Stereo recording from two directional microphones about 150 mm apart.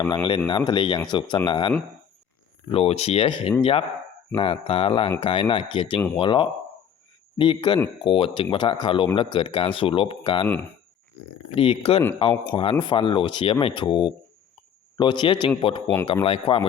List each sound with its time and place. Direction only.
0.3 s speech: 30° left (ahead or behind)
2.7 s speech: 40° left (ahead or behind)
10.4 s speech: 15° left (ahead or behind)
11.5 s speech: 40° left (ahead or behind)